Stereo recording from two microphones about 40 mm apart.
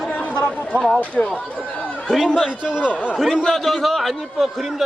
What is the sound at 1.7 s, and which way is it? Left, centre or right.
Chatter, left.